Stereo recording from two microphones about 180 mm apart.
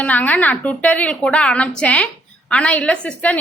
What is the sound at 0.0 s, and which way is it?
A woman's voice, 10° left (ahead or behind).